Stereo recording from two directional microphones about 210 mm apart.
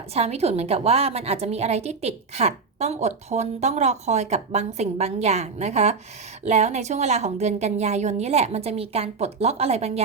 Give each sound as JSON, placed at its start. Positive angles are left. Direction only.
{"t": 0.1, "sound": "a woman's voice", "side_deg": -30}